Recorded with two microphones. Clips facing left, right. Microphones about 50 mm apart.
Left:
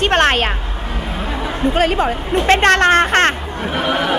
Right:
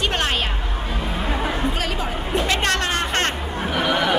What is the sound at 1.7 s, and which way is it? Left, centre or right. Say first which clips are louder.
Speech: left 9 dB; left.